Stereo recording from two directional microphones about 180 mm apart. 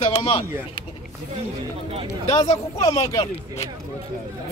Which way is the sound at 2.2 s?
35° left (ahead or behind).